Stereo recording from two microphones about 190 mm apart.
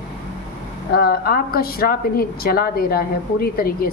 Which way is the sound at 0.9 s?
55° left (ahead or behind).